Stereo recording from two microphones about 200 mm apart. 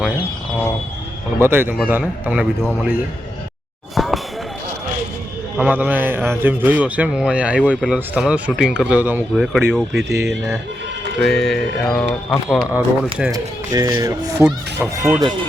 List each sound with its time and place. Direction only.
1.4 s speech: 10° right (ahead or behind)
3.9 s basketball bounce: centre (ahead or behind)
5.5 s speech: 10° right (ahead or behind)
13.3 s speech: 20° right (ahead or behind)